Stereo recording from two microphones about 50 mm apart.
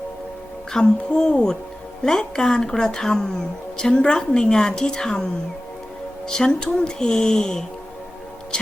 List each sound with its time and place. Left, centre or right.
0.7 s a woman's voice: centre